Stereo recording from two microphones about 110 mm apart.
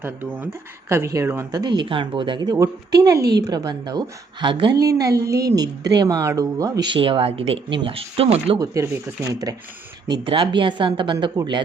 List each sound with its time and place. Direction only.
0.0 s speech: 15° right (ahead or behind)
0.9 s a woman's voice: 25° right (ahead or behind)
1.5 s a woman's voice: 40° right (ahead or behind)
6.9 s speech: 55° right (ahead or behind)
8.5 s a woman's voice: 30° right (ahead or behind)
10.1 s speech: 45° right (ahead or behind)